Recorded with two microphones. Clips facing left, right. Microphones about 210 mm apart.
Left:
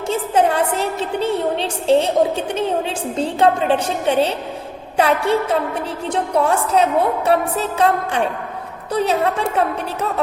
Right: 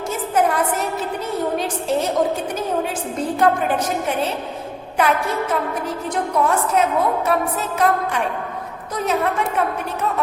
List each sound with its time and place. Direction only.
0.1 s a woman's voice: 30° left (ahead or behind)